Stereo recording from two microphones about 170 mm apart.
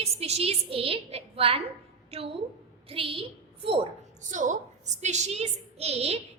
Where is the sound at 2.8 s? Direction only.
30° right (ahead or behind).